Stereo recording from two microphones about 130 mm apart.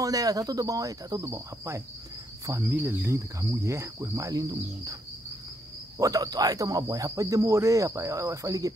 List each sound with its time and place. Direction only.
0.0 s speech: 30° right (ahead or behind)
2.4 s cricket: 25° right (ahead or behind)
2.7 s speech: 15° right (ahead or behind)
5.9 s speech: 25° right (ahead or behind)